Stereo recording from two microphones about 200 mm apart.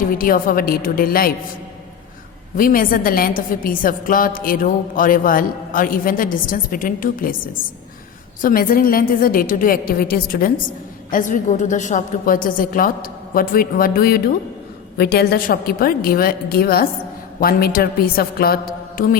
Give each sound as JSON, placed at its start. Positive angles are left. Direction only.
{"t": 0.1, "sound": "a woman's voice", "side_deg": 45}
{"t": 2.6, "sound": "a woman's voice", "side_deg": 45}